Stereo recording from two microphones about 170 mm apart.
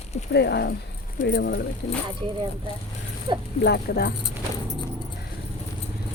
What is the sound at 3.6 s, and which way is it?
Speech, 70° left (ahead or behind).